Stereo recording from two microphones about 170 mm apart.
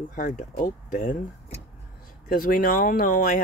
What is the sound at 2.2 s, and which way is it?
Speech, 55° left (ahead or behind).